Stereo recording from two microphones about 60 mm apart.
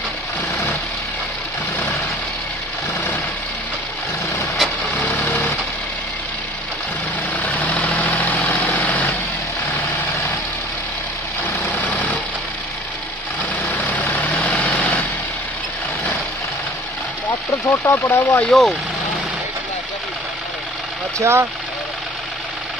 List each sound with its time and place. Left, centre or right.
7.3 s vehicle: left
11.4 s vehicle: left
13.7 s vehicle: left
17.6 s speech: left
18.5 s speech: centre
21.2 s speech: right